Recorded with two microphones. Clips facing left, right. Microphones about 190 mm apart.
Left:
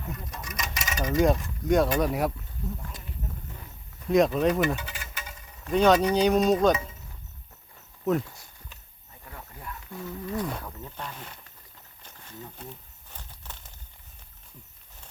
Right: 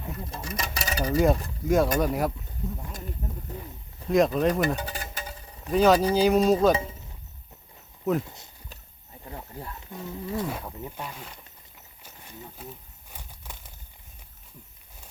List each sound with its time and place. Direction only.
0.2 s speech: 30° right (ahead or behind)
1.6 s speech: centre (ahead or behind)
4.1 s speech: centre (ahead or behind)
4.8 s a sound: 40° right (ahead or behind)
5.7 s speech: centre (ahead or behind)
8.0 s speech: centre (ahead or behind)
9.2 s cricket: 30° right (ahead or behind)
9.9 s speech: 20° right (ahead or behind)
10.3 s speech: 5° right (ahead or behind)
12.0 s wild animals: 15° right (ahead or behind)
12.5 s a sound: 5° right (ahead or behind)